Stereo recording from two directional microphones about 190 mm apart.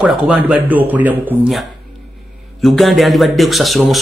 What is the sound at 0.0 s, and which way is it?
A man's voice, 5° right (ahead or behind).